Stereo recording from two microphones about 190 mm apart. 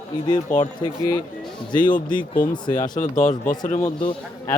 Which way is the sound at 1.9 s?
45° left (ahead or behind).